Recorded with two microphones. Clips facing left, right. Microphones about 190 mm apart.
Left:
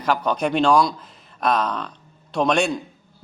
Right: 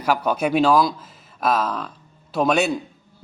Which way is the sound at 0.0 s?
10° right (ahead or behind).